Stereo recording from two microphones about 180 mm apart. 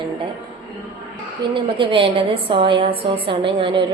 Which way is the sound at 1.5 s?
30° right (ahead or behind).